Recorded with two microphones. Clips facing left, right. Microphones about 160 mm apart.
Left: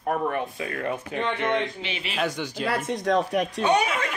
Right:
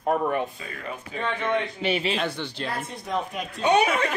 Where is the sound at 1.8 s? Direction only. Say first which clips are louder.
Right 9 dB; 45° right (ahead or behind).